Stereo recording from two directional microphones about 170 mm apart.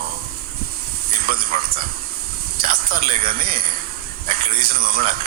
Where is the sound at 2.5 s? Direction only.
60° right (ahead or behind).